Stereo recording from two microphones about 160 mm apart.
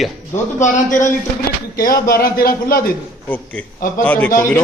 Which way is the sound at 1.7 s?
65° left (ahead or behind).